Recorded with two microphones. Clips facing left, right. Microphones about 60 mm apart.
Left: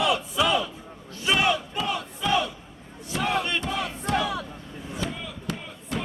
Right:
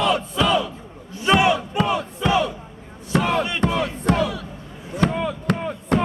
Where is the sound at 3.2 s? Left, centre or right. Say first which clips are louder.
Right 3 dB; right.